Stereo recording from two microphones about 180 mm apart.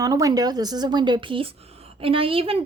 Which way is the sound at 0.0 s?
20° right (ahead or behind).